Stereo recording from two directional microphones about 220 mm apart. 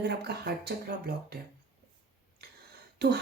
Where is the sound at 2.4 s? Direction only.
45° right (ahead or behind).